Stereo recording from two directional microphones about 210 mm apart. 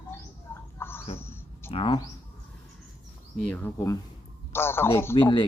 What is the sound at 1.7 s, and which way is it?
Speech, 25° left (ahead or behind).